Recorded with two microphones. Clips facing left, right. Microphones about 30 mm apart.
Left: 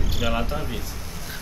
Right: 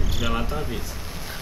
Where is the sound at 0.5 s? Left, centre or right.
Centre.